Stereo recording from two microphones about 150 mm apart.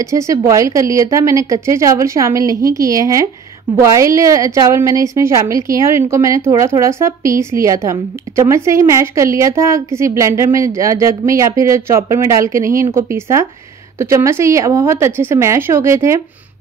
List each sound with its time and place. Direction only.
0.0 s a woman's voice: 20° right (ahead or behind)